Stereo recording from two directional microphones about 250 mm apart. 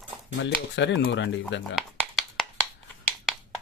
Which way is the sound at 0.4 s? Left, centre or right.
Left.